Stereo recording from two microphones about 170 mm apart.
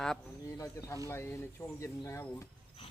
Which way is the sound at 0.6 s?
15° left (ahead or behind).